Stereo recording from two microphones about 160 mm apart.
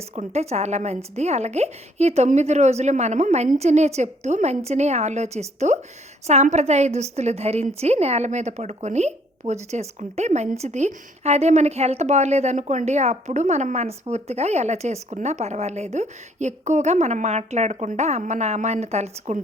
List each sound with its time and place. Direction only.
0.2 s a woman's voice: 45° right (ahead or behind)